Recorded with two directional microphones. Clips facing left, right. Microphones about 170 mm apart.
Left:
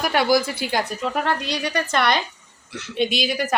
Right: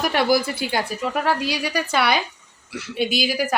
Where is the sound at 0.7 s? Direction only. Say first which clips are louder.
Left 1 dB; 5° right (ahead or behind).